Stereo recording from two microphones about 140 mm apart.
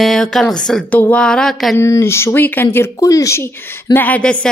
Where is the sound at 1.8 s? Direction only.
20° left (ahead or behind).